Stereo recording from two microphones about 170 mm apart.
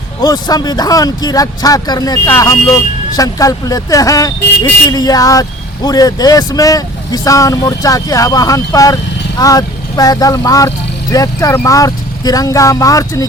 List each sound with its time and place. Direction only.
0.2 s a man's voice: 20° left (ahead or behind)